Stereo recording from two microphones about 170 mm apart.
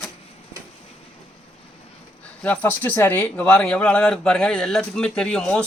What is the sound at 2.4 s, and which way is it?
Speech, 10° left (ahead or behind).